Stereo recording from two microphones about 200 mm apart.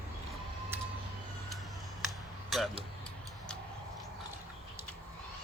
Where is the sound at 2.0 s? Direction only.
Centre (ahead or behind).